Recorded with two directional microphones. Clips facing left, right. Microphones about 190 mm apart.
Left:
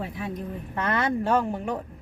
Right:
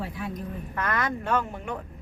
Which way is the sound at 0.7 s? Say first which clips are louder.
Left 4 dB; 30° left (ahead or behind).